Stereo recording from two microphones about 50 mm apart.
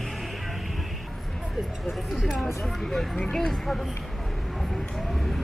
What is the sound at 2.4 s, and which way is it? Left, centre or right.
Speech, centre.